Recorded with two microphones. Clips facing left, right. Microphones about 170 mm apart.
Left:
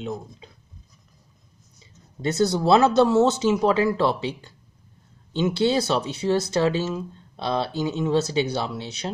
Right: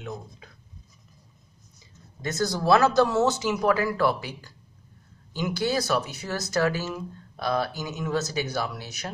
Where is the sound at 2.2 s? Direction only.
30° left (ahead or behind).